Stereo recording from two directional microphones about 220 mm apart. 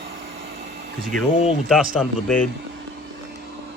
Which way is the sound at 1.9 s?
Centre (ahead or behind).